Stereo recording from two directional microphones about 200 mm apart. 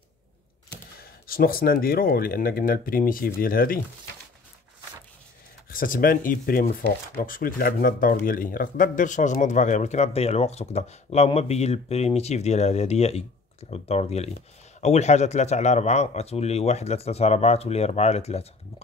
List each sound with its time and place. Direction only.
0.9 s speech: 50° left (ahead or behind)
5.7 s speech: 45° left (ahead or behind)